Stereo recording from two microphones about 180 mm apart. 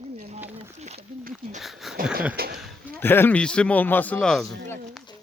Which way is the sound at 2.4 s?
60° right (ahead or behind).